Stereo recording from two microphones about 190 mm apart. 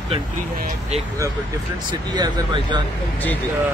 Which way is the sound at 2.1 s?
20° right (ahead or behind).